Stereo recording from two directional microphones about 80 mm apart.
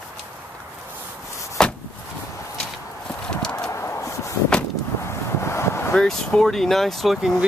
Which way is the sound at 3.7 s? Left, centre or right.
Left.